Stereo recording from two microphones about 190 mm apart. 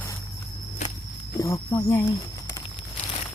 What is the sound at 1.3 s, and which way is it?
Speech, 20° left (ahead or behind).